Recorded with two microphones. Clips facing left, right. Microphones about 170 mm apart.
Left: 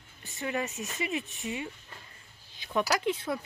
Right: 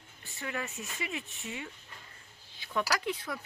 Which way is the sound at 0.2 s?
20° left (ahead or behind).